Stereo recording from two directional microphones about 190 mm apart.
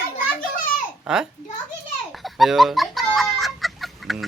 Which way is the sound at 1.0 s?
5° right (ahead or behind).